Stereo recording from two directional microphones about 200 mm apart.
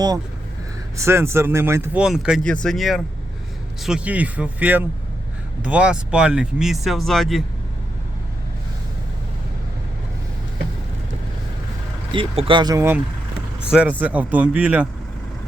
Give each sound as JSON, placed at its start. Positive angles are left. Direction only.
{"t": 0.9, "sound": "speech", "side_deg": -15}
{"t": 12.1, "sound": "speech", "side_deg": -25}